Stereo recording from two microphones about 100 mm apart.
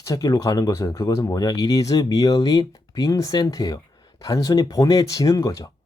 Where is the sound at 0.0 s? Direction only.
35° left (ahead or behind).